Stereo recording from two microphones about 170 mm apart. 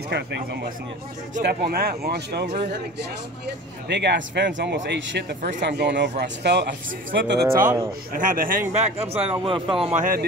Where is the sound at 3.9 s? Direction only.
85° right.